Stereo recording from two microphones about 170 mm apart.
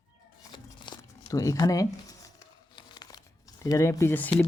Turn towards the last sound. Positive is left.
turn(degrees=10)  # may be behind; listen again after turning